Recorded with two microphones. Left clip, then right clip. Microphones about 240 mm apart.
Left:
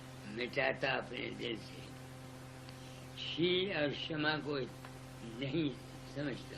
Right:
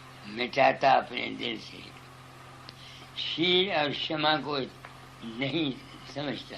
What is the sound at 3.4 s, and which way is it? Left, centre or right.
Speech, right.